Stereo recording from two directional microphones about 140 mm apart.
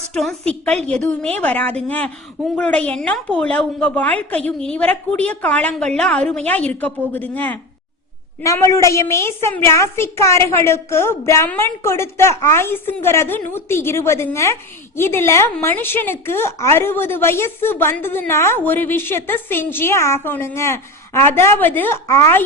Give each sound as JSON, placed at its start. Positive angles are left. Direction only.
{"t": 0.1, "sound": "a woman's voice", "side_deg": 5}
{"t": 8.4, "sound": "a woman's voice", "side_deg": 20}